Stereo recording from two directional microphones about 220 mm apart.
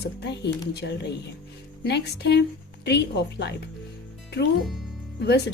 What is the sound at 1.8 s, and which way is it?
Speech, 50° left (ahead or behind).